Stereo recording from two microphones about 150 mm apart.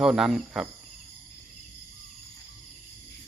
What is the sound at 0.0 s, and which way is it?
Speech, centre (ahead or behind).